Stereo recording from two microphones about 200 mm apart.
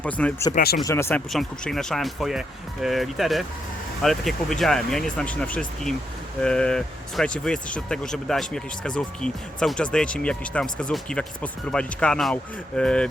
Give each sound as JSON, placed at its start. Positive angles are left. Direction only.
{"t": 0.0, "sound": "speech", "side_deg": 5}
{"t": 0.5, "sound": "speech", "side_deg": 50}
{"t": 0.8, "sound": "speech", "side_deg": 15}
{"t": 1.3, "sound": "speech", "side_deg": 0}